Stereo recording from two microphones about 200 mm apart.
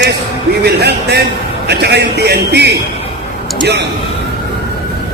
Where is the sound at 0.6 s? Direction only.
55° right (ahead or behind).